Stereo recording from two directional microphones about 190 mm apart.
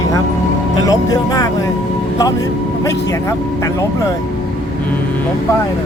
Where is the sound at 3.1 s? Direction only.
15° left (ahead or behind).